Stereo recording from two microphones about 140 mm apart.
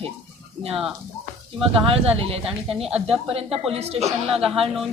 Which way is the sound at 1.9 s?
45° right (ahead or behind).